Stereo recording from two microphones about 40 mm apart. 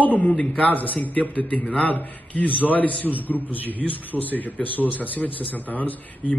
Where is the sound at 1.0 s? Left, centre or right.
Left.